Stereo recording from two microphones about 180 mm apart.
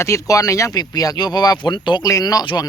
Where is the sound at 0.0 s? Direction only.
15° left (ahead or behind).